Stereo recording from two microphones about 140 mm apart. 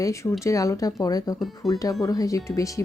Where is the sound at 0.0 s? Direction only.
20° left (ahead or behind).